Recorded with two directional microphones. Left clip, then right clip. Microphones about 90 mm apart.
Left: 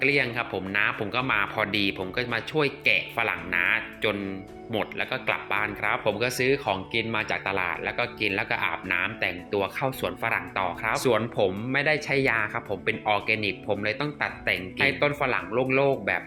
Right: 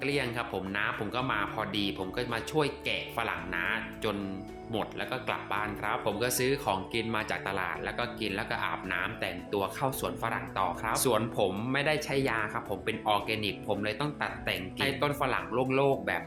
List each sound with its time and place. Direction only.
0.0 s speech: 20° left (ahead or behind)
2.3 s speech: 15° left (ahead or behind)
2.8 s speech: 30° left (ahead or behind)
6.1 s speech: 15° left (ahead or behind)
10.2 s speech: 30° left (ahead or behind)
15.5 s speech: 5° left (ahead or behind)